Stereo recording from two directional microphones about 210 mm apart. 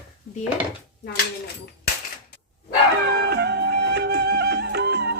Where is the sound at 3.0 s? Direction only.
50° right (ahead or behind).